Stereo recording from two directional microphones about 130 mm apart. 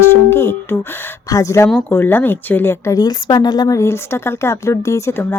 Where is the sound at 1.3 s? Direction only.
25° left (ahead or behind).